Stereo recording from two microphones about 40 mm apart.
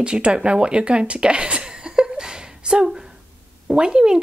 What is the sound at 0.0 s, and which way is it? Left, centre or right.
Speech, right.